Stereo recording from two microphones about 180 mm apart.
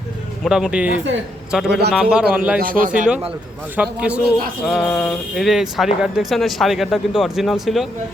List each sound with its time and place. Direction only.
0.4 s a man's voice: 5° right (ahead or behind)
2.6 s speech: 50° right (ahead or behind)
3.8 s a man's voice: 5° right (ahead or behind)
4.6 s speech: 5° left (ahead or behind)